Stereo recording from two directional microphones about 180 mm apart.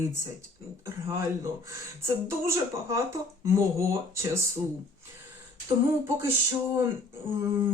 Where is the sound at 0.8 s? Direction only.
15° right (ahead or behind).